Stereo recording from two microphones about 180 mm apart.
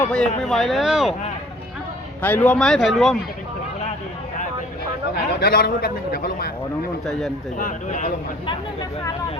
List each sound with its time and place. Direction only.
0.0 s speech: 5° left (ahead or behind)
2.2 s speech: 10° left (ahead or behind)
5.4 s a man's voice: 60° left (ahead or behind)
7.0 s speech: centre (ahead or behind)
7.6 s a man's voice: 45° left (ahead or behind)
8.4 s speech: 20° left (ahead or behind)